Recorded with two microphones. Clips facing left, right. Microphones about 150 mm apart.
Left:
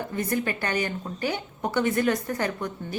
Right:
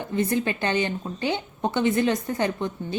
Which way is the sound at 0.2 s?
25° right (ahead or behind).